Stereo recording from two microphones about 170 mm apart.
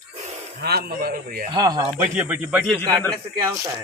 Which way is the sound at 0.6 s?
65° right (ahead or behind).